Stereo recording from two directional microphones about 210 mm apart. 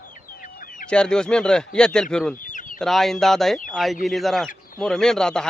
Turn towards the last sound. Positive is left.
turn(degrees=5)  # may be behind; listen again after turning